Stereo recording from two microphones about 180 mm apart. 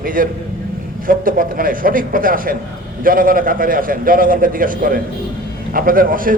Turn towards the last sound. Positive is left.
turn(degrees=-50)  # may be behind; listen again after turning